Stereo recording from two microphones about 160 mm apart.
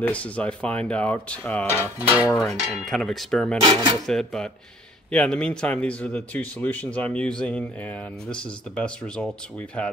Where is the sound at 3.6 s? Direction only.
30° right (ahead or behind).